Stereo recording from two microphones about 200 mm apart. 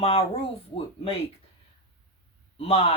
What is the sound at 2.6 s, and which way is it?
Speech, 30° left (ahead or behind).